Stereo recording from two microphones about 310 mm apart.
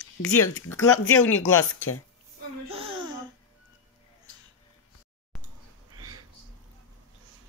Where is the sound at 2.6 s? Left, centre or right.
Centre.